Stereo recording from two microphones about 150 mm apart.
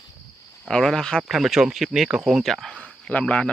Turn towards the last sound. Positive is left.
turn(degrees=5)  # may be behind; listen again after turning